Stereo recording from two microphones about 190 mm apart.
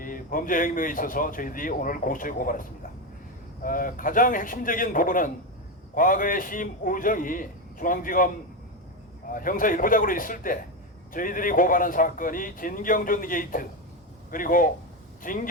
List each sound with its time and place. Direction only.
0.0 s speech: 45° left (ahead or behind)
9.3 s a man's voice: 45° left (ahead or behind)